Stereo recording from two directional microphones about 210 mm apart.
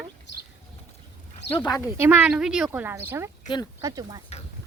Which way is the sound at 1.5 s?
20° left (ahead or behind).